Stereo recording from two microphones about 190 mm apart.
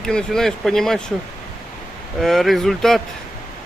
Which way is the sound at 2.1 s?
Centre (ahead or behind).